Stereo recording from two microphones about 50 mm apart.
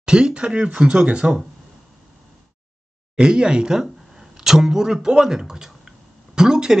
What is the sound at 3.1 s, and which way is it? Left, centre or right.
Speech, centre.